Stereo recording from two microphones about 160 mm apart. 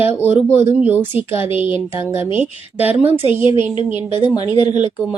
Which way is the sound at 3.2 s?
35° left (ahead or behind).